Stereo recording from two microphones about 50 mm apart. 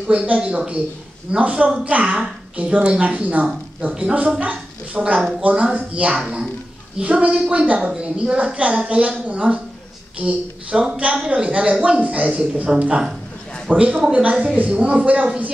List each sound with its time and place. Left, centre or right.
0.3 s a woman's voice: right